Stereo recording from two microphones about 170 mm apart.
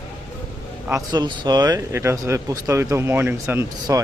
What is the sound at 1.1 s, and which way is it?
Speech, 25° right (ahead or behind).